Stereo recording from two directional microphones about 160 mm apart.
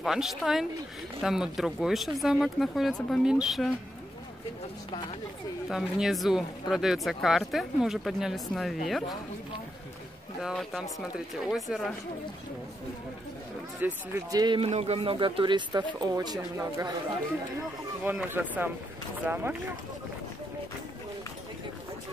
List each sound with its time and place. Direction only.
0.0 s speech: centre (ahead or behind)
5.7 s speech: centre (ahead or behind)
10.4 s speech: centre (ahead or behind)
13.8 s speech: 20° right (ahead or behind)
14.7 s speech: 40° right (ahead or behind); by 16.9 s 20° right (ahead or behind)
18.0 s speech: 10° right (ahead or behind)